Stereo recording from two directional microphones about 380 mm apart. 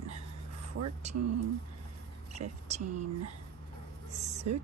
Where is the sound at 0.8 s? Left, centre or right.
Right.